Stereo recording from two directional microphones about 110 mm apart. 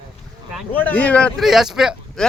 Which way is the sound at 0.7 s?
15° left (ahead or behind).